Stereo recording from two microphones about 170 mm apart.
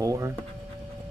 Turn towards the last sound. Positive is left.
turn(degrees=-15)  # may be behind; listen again after turning